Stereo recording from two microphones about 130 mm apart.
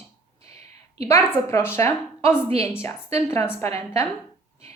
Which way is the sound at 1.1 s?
20° left (ahead or behind).